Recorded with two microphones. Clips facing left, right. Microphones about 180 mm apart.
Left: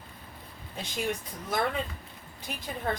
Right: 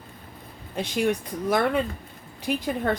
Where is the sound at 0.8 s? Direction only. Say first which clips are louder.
Right 8 dB; 65° right (ahead or behind).